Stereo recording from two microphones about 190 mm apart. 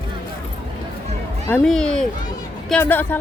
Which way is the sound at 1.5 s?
5° left (ahead or behind).